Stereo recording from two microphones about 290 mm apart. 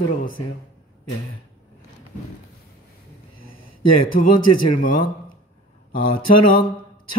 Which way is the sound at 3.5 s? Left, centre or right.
Left.